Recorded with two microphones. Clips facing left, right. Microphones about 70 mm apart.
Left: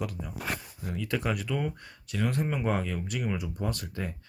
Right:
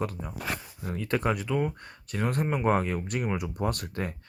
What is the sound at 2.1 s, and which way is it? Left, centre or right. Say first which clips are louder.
Speech: right 1 dB; right.